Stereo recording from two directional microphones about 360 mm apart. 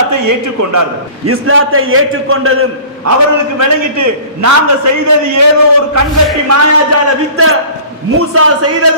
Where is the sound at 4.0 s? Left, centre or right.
Right.